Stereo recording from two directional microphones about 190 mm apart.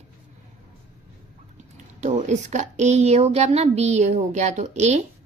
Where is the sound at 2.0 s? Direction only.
40° right (ahead or behind).